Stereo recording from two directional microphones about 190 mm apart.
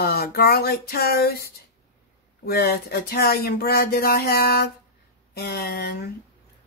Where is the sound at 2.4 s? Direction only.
55° left (ahead or behind).